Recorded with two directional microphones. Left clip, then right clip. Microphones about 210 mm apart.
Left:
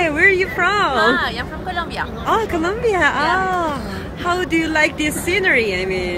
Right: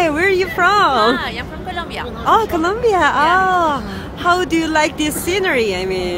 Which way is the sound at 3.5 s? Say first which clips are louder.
Right 5 dB; 20° right (ahead or behind).